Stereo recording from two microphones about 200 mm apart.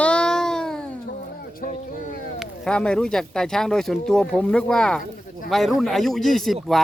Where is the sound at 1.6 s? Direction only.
45° left (ahead or behind).